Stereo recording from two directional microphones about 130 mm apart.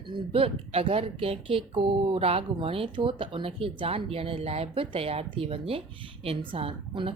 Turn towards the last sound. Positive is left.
turn(degrees=-45)  # may be behind; listen again after turning